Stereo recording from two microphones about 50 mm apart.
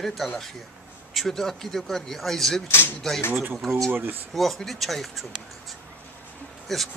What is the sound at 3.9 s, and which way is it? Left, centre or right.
Speech, right.